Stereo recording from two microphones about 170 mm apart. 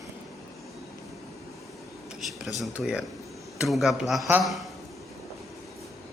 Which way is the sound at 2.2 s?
Centre (ahead or behind).